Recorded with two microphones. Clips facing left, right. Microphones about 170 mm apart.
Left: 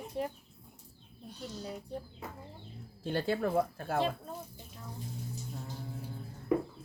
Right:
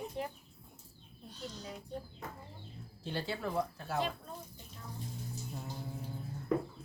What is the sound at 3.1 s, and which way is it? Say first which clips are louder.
Speech: left 6 dB; 55° left (ahead or behind).